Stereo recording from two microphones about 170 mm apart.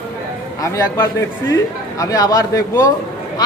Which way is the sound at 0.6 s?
20° left (ahead or behind).